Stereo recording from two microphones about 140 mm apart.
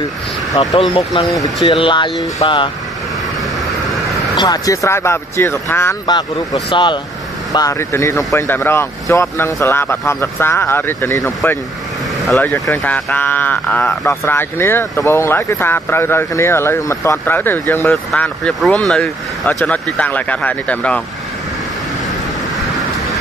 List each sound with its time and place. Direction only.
0.6 s speech: 40° left (ahead or behind)
4.4 s speech: 25° left (ahead or behind)
6.0 s speech: 30° left (ahead or behind)
7.5 s speech: 20° left (ahead or behind)
12.7 s speech: 10° left (ahead or behind)